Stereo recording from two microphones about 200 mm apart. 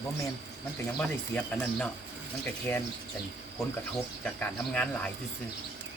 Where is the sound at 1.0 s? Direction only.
5° left (ahead or behind).